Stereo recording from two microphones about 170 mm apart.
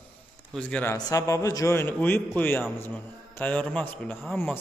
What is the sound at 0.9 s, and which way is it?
A man's voice, 20° left (ahead or behind).